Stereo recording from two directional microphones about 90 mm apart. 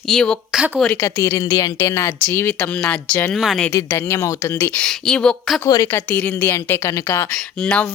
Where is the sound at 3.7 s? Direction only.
30° left (ahead or behind).